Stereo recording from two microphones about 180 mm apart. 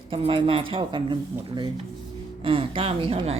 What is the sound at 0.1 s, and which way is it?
A woman's voice, 30° right (ahead or behind).